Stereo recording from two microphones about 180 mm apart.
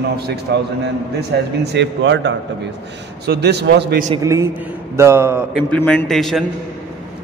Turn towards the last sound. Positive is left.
turn(degrees=0)  # may be behind; listen again after turning